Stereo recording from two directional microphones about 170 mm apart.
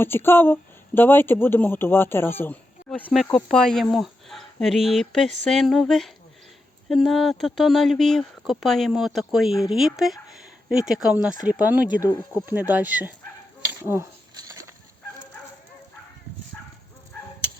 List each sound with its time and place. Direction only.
0.0 s a woman's voice: 15° left (ahead or behind); by 13.1 s 10° right (ahead or behind)
13.8 s dishes: 15° right (ahead or behind)